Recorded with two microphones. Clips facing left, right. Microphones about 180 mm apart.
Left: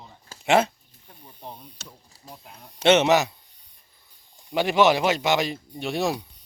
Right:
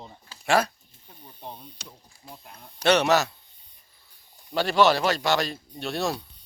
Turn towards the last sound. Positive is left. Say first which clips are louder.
# left 3 dB
turn(degrees=15)  # may be behind; listen again after turning